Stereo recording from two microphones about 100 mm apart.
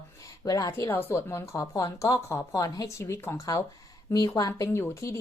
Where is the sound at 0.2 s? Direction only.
35° left (ahead or behind).